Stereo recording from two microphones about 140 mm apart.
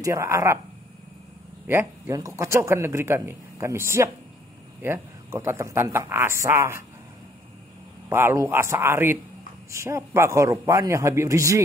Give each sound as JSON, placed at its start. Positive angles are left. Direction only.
{"t": 0.0, "sound": "speech", "side_deg": -20}
{"t": 1.7, "sound": "speech", "side_deg": -20}
{"t": 8.1, "sound": "speech", "side_deg": -15}